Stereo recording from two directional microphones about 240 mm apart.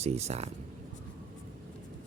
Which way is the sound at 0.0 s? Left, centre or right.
Right.